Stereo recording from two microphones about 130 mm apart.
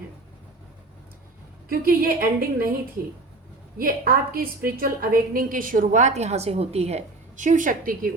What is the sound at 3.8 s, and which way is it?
A woman's voice, 90° right.